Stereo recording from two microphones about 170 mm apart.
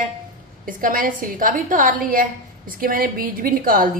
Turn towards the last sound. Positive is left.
turn(degrees=-55)  # may be behind; listen again after turning